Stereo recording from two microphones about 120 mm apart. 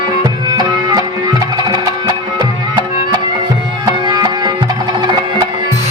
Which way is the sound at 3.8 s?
35° right (ahead or behind).